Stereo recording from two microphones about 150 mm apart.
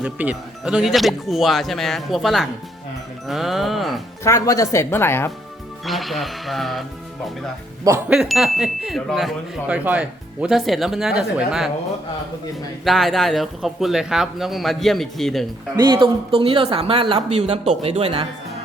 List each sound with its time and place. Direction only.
0.0 s speech: 10° right (ahead or behind)
4.2 s speech: 20° left (ahead or behind)
5.8 s speech: centre (ahead or behind)
8.1 s speech: 5° right (ahead or behind)
12.8 s speech: centre (ahead or behind)
15.7 s speech: 30° right (ahead or behind)